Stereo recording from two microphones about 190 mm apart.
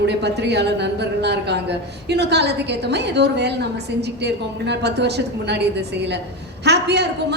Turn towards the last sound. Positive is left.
turn(degrees=-60)  # may be behind; listen again after turning